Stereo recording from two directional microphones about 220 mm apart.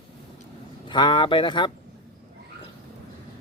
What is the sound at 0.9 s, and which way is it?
Speech, 20° left (ahead or behind).